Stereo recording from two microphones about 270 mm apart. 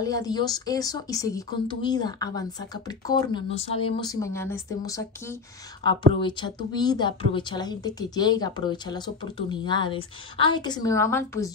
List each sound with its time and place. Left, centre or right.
0.0 s a woman's voice: centre